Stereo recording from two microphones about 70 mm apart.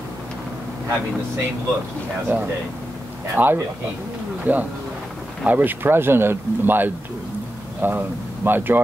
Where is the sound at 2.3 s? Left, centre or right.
Right.